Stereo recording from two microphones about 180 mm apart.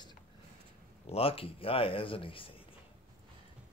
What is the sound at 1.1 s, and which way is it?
Speech, 30° left (ahead or behind).